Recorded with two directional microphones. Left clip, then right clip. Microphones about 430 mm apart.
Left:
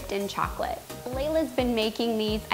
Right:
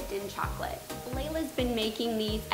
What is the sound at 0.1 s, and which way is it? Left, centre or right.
A woman's voice, left.